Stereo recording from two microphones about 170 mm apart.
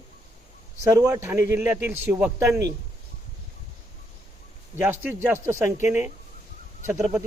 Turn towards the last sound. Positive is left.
turn(degrees=-15)  # may be behind; listen again after turning